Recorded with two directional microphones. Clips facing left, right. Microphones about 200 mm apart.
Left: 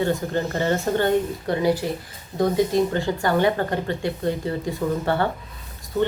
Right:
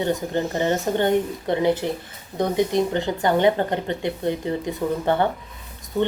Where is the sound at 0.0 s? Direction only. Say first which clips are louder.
Even; 20° right (ahead or behind).